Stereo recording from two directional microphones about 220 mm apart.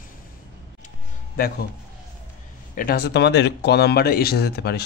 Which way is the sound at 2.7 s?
45° left (ahead or behind).